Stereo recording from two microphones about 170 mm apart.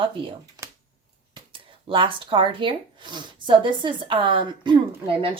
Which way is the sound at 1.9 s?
30° right (ahead or behind).